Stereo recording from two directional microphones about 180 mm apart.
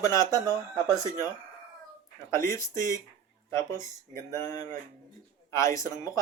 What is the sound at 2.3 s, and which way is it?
Speech, 15° left (ahead or behind).